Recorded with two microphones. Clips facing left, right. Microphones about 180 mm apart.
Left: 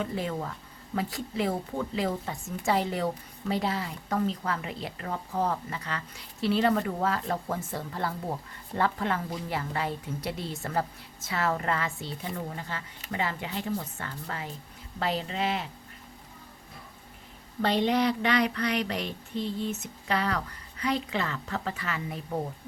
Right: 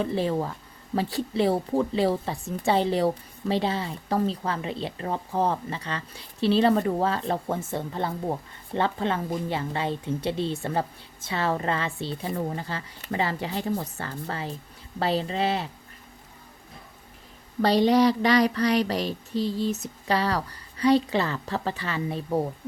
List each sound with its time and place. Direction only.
0.0 s a woman's voice: 30° right (ahead or behind)
17.6 s speech: 35° right (ahead or behind)